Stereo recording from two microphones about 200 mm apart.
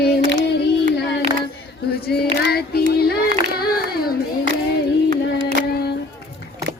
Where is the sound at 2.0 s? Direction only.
50° left (ahead or behind).